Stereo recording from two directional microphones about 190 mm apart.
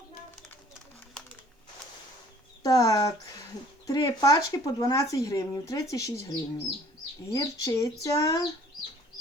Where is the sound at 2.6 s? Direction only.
20° left (ahead or behind).